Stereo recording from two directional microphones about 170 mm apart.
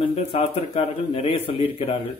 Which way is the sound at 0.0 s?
35° left (ahead or behind).